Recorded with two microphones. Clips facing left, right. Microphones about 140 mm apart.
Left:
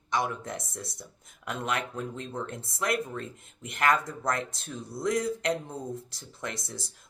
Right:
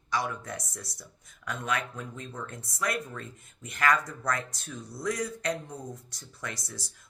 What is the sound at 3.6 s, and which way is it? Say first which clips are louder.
Speech: left 1 dB; 25° left (ahead or behind).